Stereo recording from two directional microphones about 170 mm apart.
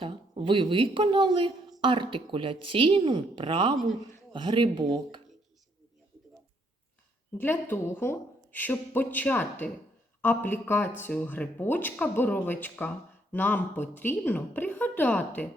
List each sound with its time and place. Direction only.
0.0 s a woman's voice: 30° right (ahead or behind)
7.3 s speech: 10° left (ahead or behind)